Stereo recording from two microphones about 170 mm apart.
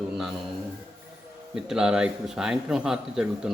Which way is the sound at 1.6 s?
5° right (ahead or behind).